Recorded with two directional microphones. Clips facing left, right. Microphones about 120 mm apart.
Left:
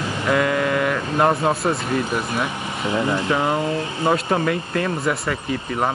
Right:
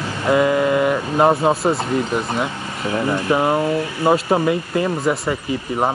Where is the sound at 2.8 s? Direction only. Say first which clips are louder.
Right 1 dB; 20° left (ahead or behind).